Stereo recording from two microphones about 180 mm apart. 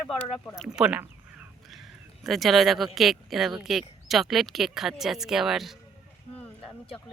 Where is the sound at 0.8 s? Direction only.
5° right (ahead or behind).